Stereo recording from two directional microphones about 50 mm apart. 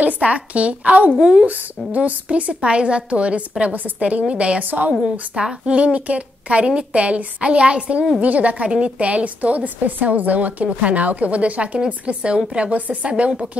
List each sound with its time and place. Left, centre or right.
0.0 s a woman's voice: right
4.6 s a woman's voice: right
5.3 s a woman's voice: centre